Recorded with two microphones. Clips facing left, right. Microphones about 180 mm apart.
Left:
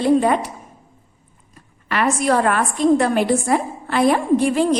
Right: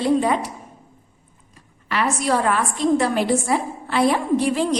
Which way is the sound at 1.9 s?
55° left (ahead or behind).